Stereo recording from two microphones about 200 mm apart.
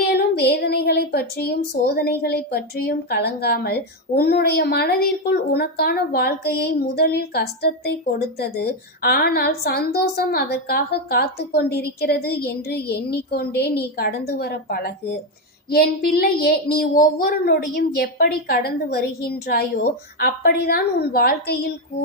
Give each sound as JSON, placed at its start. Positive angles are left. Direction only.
{"t": 0.0, "sound": "speech", "side_deg": 50}